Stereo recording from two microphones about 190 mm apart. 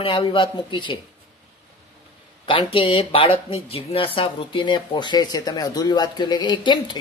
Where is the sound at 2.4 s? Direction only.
30° left (ahead or behind).